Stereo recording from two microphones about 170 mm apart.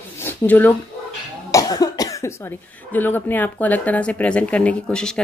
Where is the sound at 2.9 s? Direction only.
10° left (ahead or behind).